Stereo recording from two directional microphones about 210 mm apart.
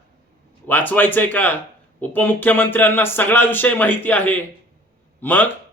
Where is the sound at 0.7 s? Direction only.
10° left (ahead or behind).